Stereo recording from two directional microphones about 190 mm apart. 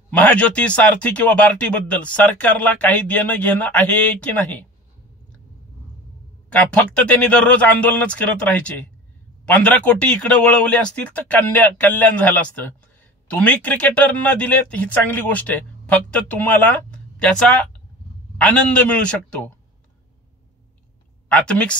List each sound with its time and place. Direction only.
0.1 s speech: 5° left (ahead or behind)
6.5 s a man's voice: 5° left (ahead or behind)
21.3 s speech: 5° left (ahead or behind)